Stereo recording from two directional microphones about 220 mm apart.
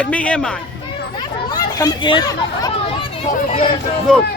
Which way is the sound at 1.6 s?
15° left (ahead or behind).